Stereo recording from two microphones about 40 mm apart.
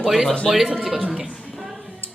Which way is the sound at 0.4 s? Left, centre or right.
Centre.